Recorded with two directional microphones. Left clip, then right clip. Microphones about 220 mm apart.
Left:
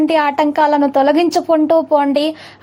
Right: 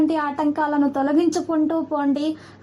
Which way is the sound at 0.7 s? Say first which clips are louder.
Left 8 dB; 30° left (ahead or behind).